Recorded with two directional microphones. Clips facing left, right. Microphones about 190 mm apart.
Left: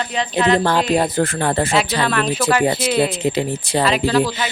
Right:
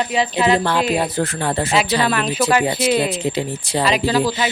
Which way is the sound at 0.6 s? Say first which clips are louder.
Left 2 dB; 50° left (ahead or behind).